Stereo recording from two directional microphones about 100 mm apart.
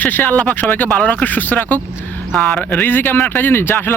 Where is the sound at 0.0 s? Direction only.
15° left (ahead or behind).